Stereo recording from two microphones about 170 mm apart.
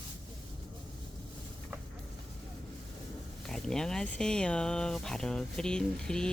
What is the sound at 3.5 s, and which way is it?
Speech, 5° left (ahead or behind).